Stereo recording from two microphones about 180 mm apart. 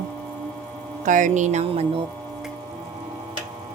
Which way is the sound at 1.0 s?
45° right (ahead or behind).